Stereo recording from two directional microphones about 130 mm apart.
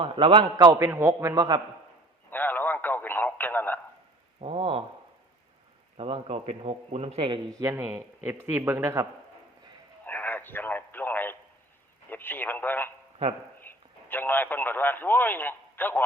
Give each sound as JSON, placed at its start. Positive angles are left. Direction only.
{"t": 0.0, "sound": "a man's voice", "side_deg": -45}
{"t": 0.9, "sound": "a man's voice", "side_deg": -20}
{"t": 1.4, "sound": "a man's voice", "side_deg": -35}
{"t": 2.3, "sound": "radio", "side_deg": 15}
{"t": 4.4, "sound": "a sound", "side_deg": -45}
{"t": 6.0, "sound": "a man's voice", "side_deg": -45}
{"t": 7.6, "sound": "a man's voice", "side_deg": -20}
{"t": 10.0, "sound": "radio", "side_deg": 15}